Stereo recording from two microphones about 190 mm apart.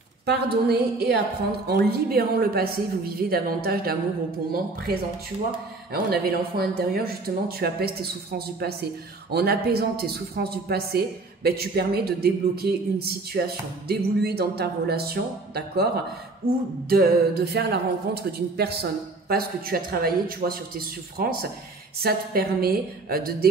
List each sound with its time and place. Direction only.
0.2 s a woman's voice: 60° right (ahead or behind)
5.9 s a woman's voice: 55° right (ahead or behind)